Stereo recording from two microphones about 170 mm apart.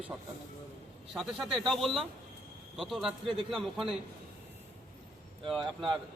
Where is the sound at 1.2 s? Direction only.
Centre (ahead or behind).